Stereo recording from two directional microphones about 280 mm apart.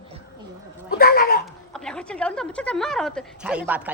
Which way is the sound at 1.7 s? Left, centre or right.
Centre.